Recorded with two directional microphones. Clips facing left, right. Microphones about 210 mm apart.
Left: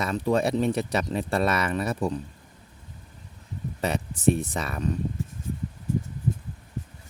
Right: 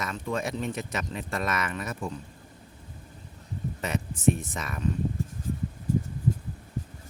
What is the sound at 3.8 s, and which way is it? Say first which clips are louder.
Speech: left 2 dB; 35° left (ahead or behind).